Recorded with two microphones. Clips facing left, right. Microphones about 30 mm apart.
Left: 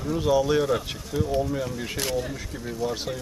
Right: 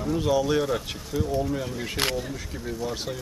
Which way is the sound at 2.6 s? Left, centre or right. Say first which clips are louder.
Left 2 dB; centre.